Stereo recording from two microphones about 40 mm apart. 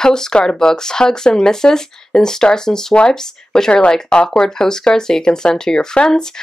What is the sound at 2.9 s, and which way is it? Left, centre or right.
Speech, left.